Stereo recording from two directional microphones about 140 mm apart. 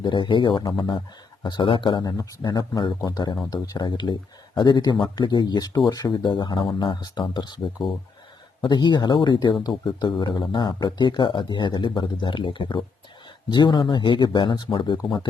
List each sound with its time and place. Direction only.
0.0 s speech: 35° left (ahead or behind)